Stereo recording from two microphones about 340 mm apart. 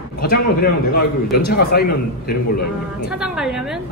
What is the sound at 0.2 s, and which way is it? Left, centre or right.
A man's voice, left.